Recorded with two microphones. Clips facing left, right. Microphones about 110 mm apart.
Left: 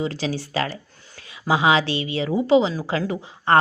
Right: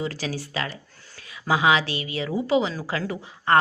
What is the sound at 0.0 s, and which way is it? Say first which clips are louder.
Speech: left 4 dB; 25° left (ahead or behind).